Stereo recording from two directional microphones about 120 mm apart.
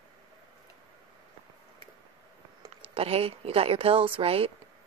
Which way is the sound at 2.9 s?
55° right (ahead or behind).